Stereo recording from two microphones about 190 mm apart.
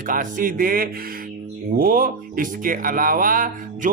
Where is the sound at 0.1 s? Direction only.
45° right (ahead or behind).